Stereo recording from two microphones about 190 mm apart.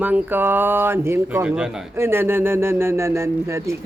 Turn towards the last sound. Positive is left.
turn(degrees=-15)  # may be behind; listen again after turning